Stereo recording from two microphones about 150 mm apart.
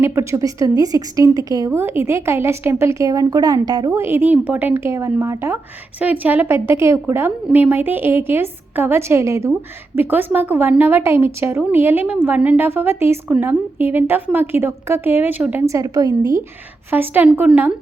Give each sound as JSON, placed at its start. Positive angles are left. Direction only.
{"t": 0.0, "sound": "a woman's voice", "side_deg": -20}
{"t": 16.9, "sound": "a woman's voice", "side_deg": -10}